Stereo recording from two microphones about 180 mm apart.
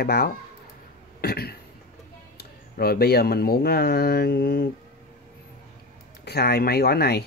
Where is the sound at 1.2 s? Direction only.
60° left (ahead or behind).